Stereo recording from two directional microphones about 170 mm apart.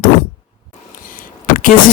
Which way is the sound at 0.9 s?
50° left (ahead or behind).